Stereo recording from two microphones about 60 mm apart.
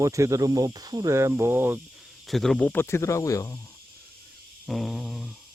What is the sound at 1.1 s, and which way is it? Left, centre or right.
Speech, right.